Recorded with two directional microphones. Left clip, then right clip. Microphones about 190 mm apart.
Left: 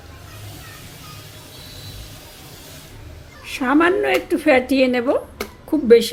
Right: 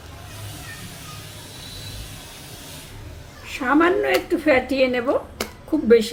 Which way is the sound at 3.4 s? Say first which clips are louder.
Left 2 dB; 30° left (ahead or behind).